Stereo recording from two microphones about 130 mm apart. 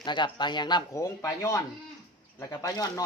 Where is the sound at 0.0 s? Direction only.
35° left (ahead or behind).